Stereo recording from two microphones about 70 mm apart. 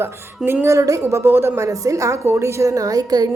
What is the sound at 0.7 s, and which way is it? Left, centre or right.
Speech, right.